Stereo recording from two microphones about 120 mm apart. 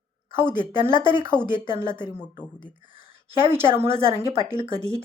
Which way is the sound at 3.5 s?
20° right (ahead or behind).